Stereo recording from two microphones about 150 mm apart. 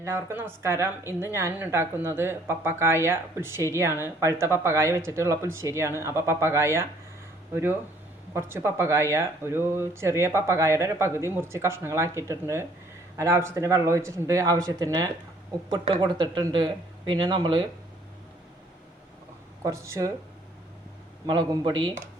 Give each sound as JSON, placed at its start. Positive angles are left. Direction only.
{"t": 0.0, "sound": "speech", "side_deg": -15}
{"t": 19.6, "sound": "speech", "side_deg": -20}
{"t": 21.2, "sound": "speech", "side_deg": -30}